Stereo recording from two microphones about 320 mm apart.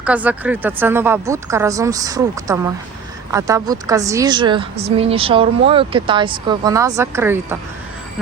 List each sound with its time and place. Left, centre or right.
0.0 s a woman's voice: centre